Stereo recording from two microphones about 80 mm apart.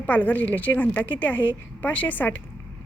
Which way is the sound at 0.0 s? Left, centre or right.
Centre.